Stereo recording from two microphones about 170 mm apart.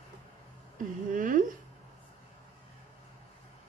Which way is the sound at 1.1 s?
50° right (ahead or behind).